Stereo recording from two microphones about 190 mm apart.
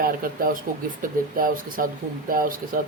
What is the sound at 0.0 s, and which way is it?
A woman's voice, 50° right (ahead or behind).